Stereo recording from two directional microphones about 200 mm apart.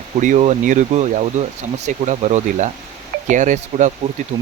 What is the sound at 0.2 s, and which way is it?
Speech, 35° right (ahead or behind).